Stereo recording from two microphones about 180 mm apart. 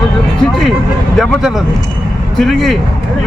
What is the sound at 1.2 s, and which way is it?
Speech, centre (ahead or behind).